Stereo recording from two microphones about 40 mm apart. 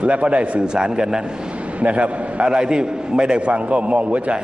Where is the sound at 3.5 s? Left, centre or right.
Right.